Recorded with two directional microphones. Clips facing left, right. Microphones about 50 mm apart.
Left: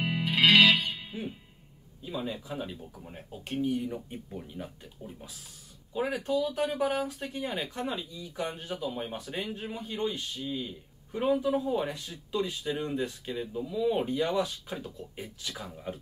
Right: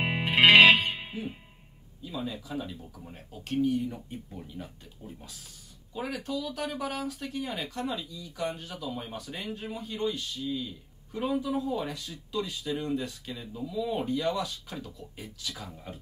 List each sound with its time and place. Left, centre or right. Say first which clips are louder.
0.0 s music: right 3 dB; right
2.0 s speech: left 1 dB; left
5.9 s speech: left 5 dB; left